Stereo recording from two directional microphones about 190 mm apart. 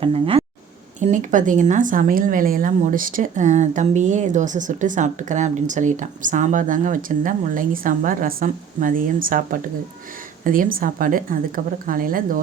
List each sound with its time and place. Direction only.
0.0 s speech: 30° right (ahead or behind)
0.9 s speech: 40° right (ahead or behind)